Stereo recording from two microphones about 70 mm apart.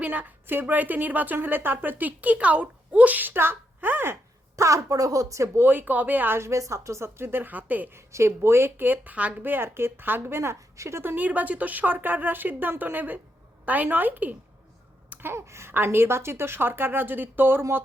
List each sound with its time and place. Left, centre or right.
0.0 s a woman's voice: right
4.5 s a woman's voice: right
5.6 s speech: right
7.9 s speech: right
11.0 s a woman's voice: right
15.1 s a sound: right
15.7 s speech: right
17.6 s speech: right